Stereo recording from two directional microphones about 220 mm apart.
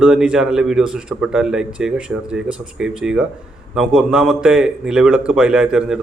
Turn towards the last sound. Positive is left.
turn(degrees=-5)  # may be behind; listen again after turning